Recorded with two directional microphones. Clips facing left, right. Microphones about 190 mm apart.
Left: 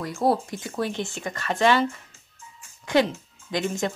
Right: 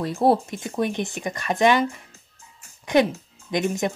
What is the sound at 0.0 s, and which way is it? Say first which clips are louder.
Speech: right 3 dB; 25° right (ahead or behind).